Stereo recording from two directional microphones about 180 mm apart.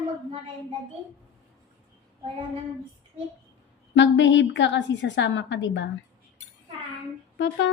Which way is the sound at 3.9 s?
90° left.